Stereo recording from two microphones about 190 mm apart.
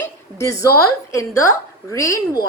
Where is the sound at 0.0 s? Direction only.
15° left (ahead or behind).